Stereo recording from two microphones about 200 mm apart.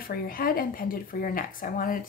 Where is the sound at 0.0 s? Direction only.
45° left (ahead or behind).